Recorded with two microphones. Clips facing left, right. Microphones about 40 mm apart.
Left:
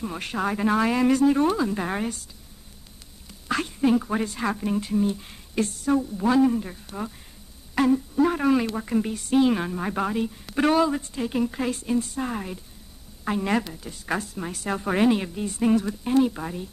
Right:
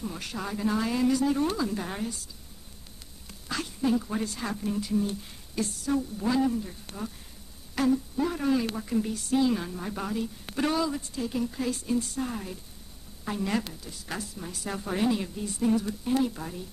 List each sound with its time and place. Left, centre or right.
0.0 s speech: left
1.8 s speech: left
3.4 s speech: left